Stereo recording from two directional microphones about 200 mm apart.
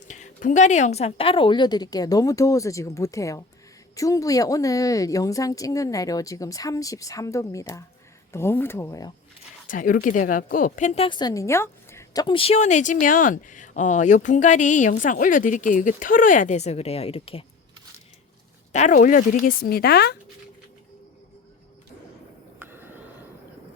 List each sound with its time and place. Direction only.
0.0 s a woman's voice: 40° left (ahead or behind); by 9.1 s 15° left (ahead or behind)
9.6 s a woman's voice: 45° left (ahead or behind)
18.7 s speech: 40° left (ahead or behind)
22.5 s a sound: 10° right (ahead or behind)